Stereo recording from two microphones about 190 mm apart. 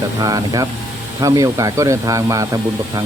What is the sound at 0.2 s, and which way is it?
Speech, 20° right (ahead or behind).